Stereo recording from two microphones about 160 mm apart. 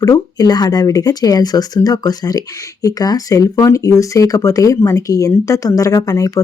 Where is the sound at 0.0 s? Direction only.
25° left (ahead or behind).